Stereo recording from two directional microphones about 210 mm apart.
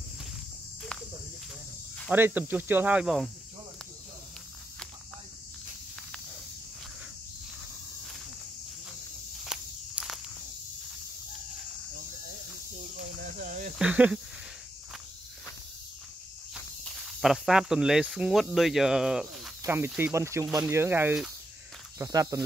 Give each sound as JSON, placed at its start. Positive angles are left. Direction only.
{"t": 2.0, "sound": "speech", "side_deg": -10}
{"t": 9.4, "sound": "walk", "side_deg": 0}
{"t": 13.4, "sound": "snake", "side_deg": -40}
{"t": 13.7, "sound": "snake", "side_deg": -5}
{"t": 16.8, "sound": "speech", "side_deg": 0}